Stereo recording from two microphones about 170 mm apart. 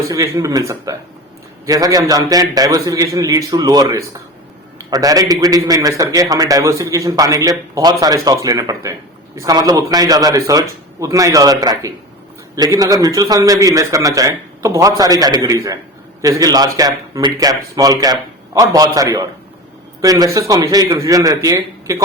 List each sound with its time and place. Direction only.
0.1 s a man's voice: 20° right (ahead or behind)